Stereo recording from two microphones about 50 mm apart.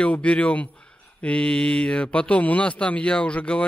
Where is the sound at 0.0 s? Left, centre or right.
Left.